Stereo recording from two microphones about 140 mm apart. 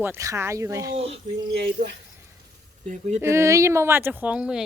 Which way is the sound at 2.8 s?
60° right (ahead or behind).